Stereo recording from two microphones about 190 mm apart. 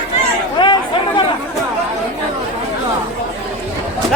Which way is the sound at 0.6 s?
25° left (ahead or behind).